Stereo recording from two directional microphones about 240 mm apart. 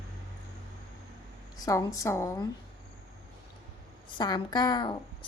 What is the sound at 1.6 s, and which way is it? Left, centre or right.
Speech, centre.